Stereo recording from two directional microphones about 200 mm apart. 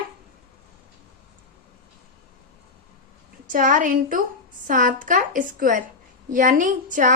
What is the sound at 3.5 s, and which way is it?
A woman's voice, 40° right (ahead or behind).